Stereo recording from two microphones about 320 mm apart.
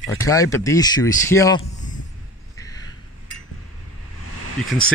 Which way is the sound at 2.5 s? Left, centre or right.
Centre.